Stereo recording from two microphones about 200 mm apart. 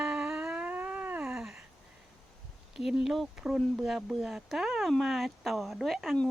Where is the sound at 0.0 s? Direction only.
5° right (ahead or behind).